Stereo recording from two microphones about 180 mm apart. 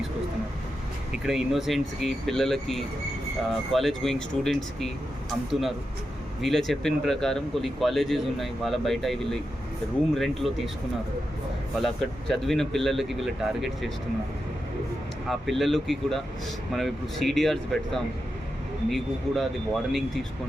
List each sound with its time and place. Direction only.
1.2 s speech: centre (ahead or behind)
12.3 s speech: centre (ahead or behind)
15.3 s speech: centre (ahead or behind)